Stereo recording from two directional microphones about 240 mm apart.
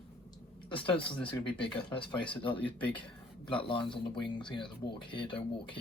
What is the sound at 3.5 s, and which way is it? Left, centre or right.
Speech, left.